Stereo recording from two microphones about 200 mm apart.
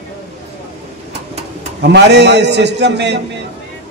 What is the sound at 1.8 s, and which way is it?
A man's voice, 60° right (ahead or behind).